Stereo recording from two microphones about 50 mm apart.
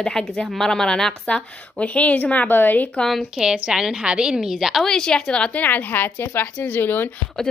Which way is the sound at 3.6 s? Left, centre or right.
Centre.